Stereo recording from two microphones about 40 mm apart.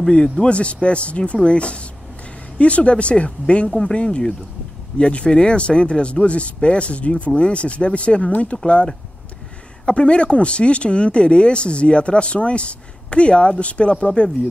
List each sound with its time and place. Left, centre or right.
0.1 s speech: left
3.6 s speech: centre
3.9 s speech: left
9.8 s speech: left